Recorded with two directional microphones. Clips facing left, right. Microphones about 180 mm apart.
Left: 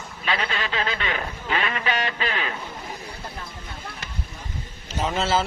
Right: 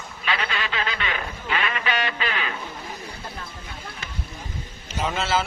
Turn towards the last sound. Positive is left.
turn(degrees=35)  # may be behind; listen again after turning